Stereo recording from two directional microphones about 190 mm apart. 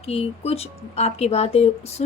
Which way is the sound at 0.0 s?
30° left (ahead or behind).